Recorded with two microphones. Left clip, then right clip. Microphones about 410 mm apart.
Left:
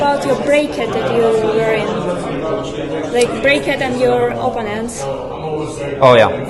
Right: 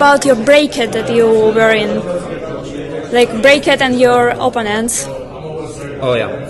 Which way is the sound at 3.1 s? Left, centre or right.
Right.